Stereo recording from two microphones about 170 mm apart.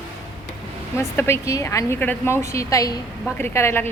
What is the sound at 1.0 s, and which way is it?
A woman's voice, 15° left (ahead or behind).